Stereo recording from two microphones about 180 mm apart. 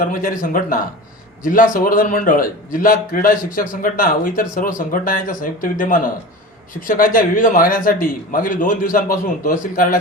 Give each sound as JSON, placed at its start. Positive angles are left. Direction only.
{"t": 0.0, "sound": "a man's voice", "side_deg": 50}